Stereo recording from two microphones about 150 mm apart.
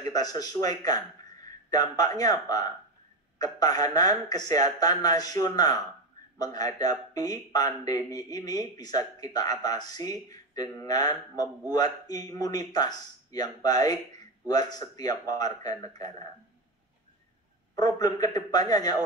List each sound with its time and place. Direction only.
0.1 s a man's voice: 25° left (ahead or behind)
17.7 s speech: 25° left (ahead or behind)